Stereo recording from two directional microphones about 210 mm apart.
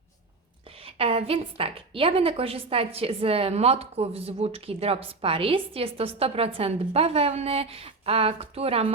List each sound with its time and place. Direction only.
0.8 s a woman's voice: 25° right (ahead or behind)